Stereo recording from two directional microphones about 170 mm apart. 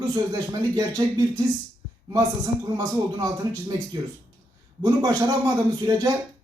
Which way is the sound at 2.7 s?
20° right (ahead or behind).